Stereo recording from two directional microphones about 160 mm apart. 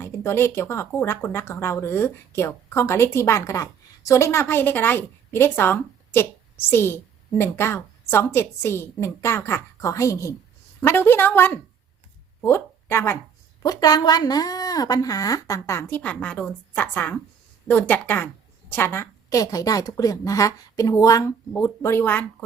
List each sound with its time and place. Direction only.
0.0 s a woman's voice: 15° left (ahead or behind)